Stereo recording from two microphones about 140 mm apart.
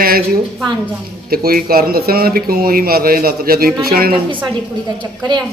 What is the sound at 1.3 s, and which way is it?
A man's voice, 90° right.